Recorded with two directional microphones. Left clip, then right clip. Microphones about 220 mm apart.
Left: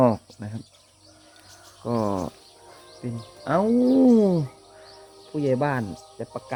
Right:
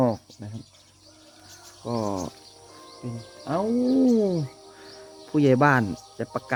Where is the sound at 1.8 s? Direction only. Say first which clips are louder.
Left 3 dB; 20° left (ahead or behind).